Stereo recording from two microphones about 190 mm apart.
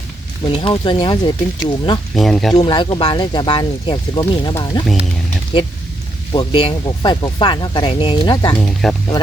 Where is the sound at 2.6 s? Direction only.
25° left (ahead or behind).